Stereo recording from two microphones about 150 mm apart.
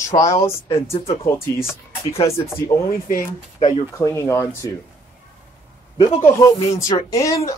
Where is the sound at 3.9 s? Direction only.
20° left (ahead or behind).